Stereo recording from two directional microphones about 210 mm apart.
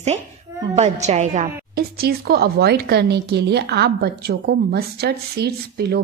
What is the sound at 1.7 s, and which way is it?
Speech, 45° right (ahead or behind).